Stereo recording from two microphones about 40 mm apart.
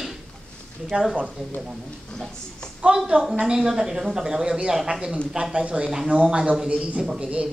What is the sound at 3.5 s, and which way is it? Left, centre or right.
A woman's voice, centre.